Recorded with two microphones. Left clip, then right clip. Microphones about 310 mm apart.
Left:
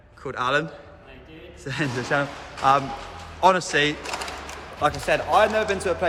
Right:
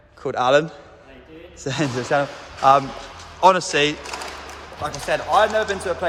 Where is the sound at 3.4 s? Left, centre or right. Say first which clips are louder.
Right 3 dB; centre.